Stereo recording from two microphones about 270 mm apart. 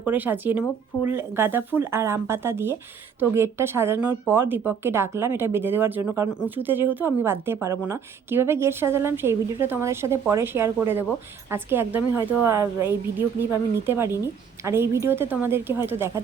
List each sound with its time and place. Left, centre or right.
0.0 s speech: centre